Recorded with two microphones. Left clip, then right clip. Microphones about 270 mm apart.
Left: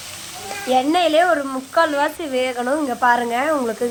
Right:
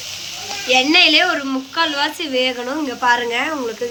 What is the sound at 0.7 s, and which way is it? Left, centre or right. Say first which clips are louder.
Speech: right 3 dB; left.